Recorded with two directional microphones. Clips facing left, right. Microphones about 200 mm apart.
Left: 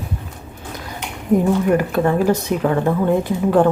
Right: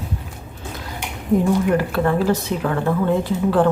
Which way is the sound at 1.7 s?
15° left (ahead or behind).